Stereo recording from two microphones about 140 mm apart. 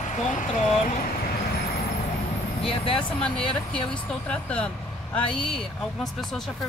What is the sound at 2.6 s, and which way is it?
Speech, 40° left (ahead or behind).